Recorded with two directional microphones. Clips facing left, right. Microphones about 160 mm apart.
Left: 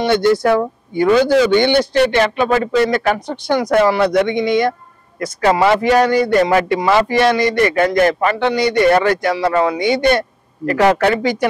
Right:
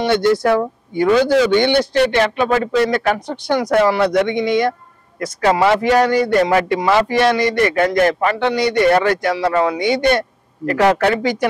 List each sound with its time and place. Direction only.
0.2 s speech: 10° left (ahead or behind)